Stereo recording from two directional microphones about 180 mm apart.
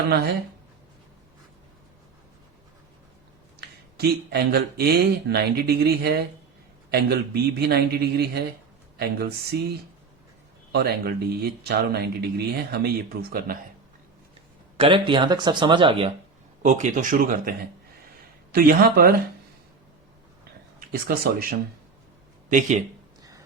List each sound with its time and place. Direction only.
3.9 s speech: 60° right (ahead or behind)
10.7 s speech: 65° right (ahead or behind)
14.8 s speech: 30° right (ahead or behind)
16.6 s speech: 40° right (ahead or behind)
18.5 s speech: 55° right (ahead or behind)
20.7 s speech: 55° right (ahead or behind)
22.4 s speech: 45° right (ahead or behind)